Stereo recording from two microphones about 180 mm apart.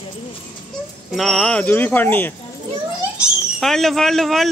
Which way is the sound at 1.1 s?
Centre (ahead or behind).